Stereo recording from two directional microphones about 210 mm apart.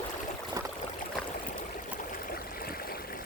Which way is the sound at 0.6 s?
15° right (ahead or behind).